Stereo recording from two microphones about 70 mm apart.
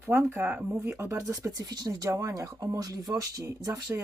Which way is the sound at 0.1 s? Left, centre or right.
Right.